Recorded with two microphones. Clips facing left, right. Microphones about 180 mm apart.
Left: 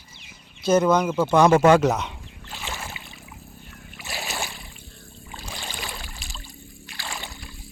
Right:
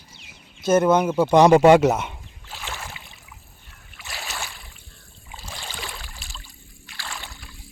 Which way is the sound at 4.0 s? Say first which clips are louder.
Left 3 dB; 10° left (ahead or behind).